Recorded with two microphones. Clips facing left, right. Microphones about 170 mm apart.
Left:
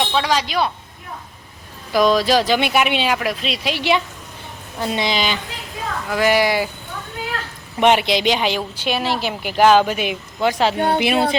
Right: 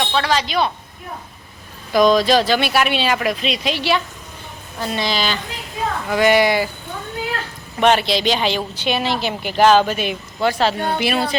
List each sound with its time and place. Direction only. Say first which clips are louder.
0.1 s speech: even; 10° left (ahead or behind)
1.9 s speech: right 2 dB; 5° left (ahead or behind)
3.2 s a woman's voice: right 2 dB; centre (ahead or behind); by 5.4 s 20° left (ahead or behind)
6.1 s speech: right 2 dB; centre (ahead or behind)
7.8 s a woman's voice: even; 15° left (ahead or behind)